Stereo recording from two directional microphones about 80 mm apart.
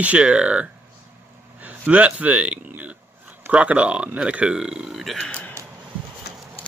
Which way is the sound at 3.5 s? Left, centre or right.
Centre.